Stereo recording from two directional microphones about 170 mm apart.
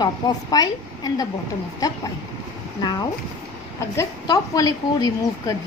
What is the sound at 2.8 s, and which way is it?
A woman's voice, 25° left (ahead or behind).